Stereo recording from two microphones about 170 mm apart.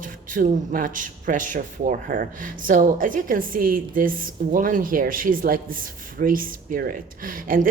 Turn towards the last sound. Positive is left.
turn(degrees=-55)  # may be behind; listen again after turning